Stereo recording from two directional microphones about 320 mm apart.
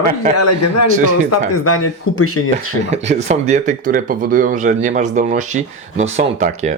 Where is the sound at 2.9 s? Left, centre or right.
Right.